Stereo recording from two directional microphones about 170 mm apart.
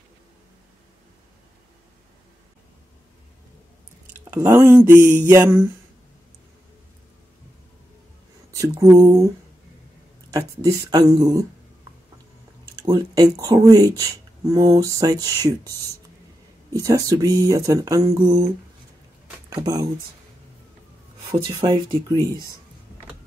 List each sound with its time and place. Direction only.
4.2 s speech: 20° right (ahead or behind)
8.5 s speech: 20° right (ahead or behind)
10.3 s speech: 20° right (ahead or behind)
12.8 s speech: 25° right (ahead or behind)
16.8 s speech: 20° right (ahead or behind)
19.6 s speech: 25° right (ahead or behind)
21.5 s speech: 30° right (ahead or behind)